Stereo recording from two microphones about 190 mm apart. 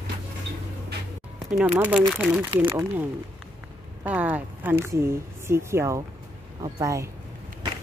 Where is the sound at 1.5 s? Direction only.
5° right (ahead or behind).